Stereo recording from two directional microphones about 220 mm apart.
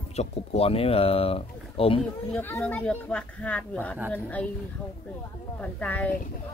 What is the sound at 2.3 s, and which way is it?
Speech, 10° left (ahead or behind).